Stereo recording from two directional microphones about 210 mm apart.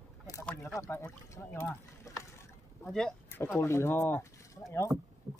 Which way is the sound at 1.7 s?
15° left (ahead or behind).